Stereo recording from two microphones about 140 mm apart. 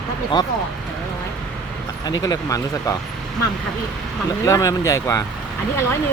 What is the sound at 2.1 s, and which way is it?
Speech, 30° left (ahead or behind).